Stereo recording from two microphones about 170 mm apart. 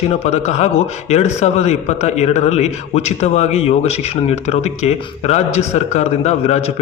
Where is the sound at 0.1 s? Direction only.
40° left (ahead or behind).